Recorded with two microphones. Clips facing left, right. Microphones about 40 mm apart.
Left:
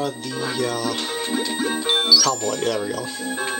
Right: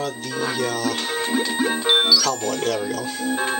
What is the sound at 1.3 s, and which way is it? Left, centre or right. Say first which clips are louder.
Music: right 2 dB; centre.